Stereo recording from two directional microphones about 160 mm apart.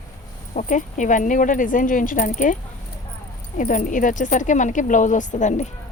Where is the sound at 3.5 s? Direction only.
55° left (ahead or behind).